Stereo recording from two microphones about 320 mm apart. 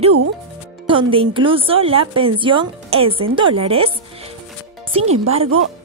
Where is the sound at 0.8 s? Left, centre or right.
Centre.